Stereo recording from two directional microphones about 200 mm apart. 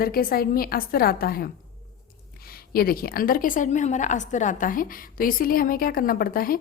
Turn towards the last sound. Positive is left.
turn(degrees=45)  # may be behind; listen again after turning